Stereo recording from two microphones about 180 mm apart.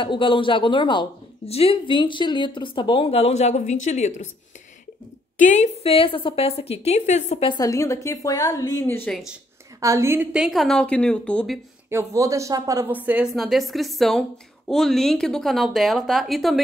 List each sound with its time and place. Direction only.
0.0 s a woman's voice: 25° left (ahead or behind)
5.4 s a woman's voice: 40° left (ahead or behind); by 9.2 s 10° left (ahead or behind)
9.8 s a woman's voice: 15° right (ahead or behind)
10.3 s a woman's voice: centre (ahead or behind)
11.9 s a woman's voice: 15° right (ahead or behind); by 16.5 s centre (ahead or behind)